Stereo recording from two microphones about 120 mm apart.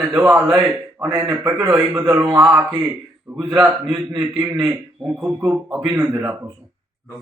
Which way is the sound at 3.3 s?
20° right (ahead or behind).